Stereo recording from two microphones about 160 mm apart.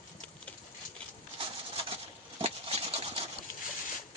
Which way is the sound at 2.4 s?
40° right (ahead or behind).